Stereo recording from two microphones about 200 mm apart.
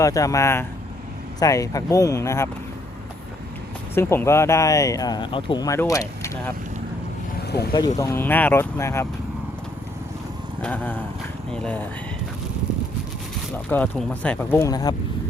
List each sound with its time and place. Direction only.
0.0 s speech: 15° left (ahead or behind)
3.9 s speech: 10° left (ahead or behind)
7.4 s vehicle: 55° left (ahead or behind)
7.9 s speech: 15° left (ahead or behind)
10.6 s speech: 5° left (ahead or behind)
13.7 s speech: 10° left (ahead or behind)